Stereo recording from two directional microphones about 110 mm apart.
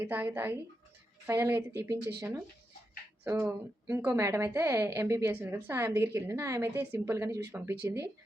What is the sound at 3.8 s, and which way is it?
A woman's voice, 25° right (ahead or behind).